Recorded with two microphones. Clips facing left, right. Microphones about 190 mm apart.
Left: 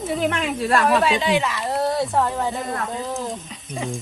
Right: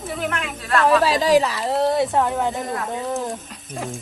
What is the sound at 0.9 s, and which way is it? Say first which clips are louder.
Speech: right 6 dB; 35° right (ahead or behind).